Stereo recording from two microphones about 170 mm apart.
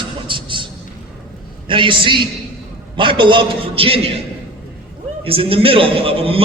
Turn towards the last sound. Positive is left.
turn(degrees=-35)  # may be behind; listen again after turning